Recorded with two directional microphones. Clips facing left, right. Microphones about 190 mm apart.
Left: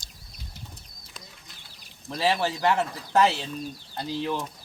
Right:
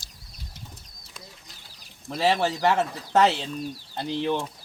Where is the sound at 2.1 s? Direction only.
20° right (ahead or behind).